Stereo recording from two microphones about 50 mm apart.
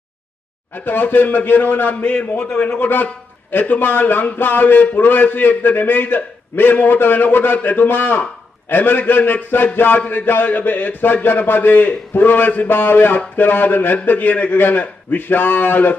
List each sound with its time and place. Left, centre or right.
0.7 s a man's voice: left
2.5 s speech: left
2.8 s a man's voice: left